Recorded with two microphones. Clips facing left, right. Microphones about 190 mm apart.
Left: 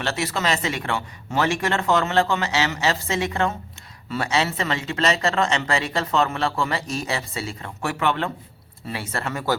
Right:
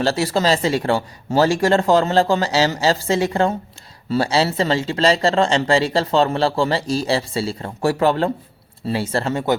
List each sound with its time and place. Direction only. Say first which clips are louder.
0.0 s speech: right 7 dB; 35° right (ahead or behind)